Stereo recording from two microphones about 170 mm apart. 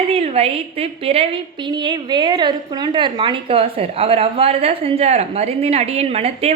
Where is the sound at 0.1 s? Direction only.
35° right (ahead or behind).